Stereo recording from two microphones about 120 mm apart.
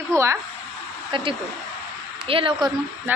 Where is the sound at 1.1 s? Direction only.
45° right (ahead or behind).